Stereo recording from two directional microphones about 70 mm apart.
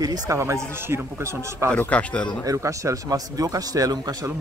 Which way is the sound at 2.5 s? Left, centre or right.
Right.